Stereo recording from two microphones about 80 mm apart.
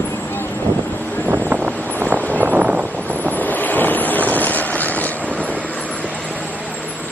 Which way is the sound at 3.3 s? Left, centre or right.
Left.